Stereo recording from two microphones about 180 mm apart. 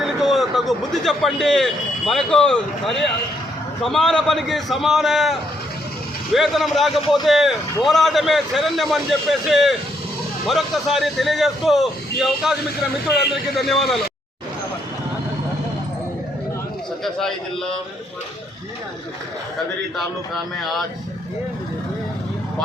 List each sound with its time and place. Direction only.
0.0 s a man's voice: centre (ahead or behind)
17.0 s a man's voice: centre (ahead or behind)
20.0 s a man's voice: centre (ahead or behind)